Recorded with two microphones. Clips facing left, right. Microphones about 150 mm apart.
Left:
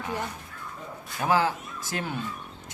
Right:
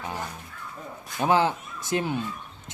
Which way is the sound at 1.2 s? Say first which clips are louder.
Right 2 dB; 20° right (ahead or behind).